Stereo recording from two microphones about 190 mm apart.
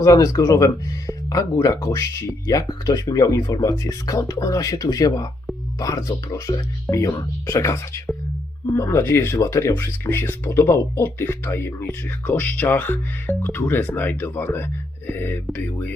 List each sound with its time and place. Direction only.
0.0 s speech: 15° left (ahead or behind)